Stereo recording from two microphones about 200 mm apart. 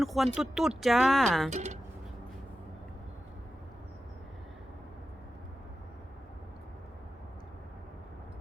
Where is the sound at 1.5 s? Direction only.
35° right (ahead or behind).